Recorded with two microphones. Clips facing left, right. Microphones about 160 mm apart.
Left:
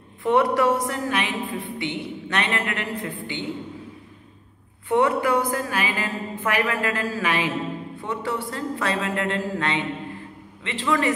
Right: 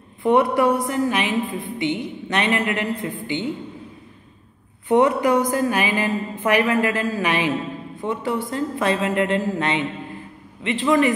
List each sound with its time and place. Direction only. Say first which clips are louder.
0.2 s a woman's voice: right 2 dB; 15° right (ahead or behind)
4.8 s a woman's voice: right 4 dB; 15° right (ahead or behind)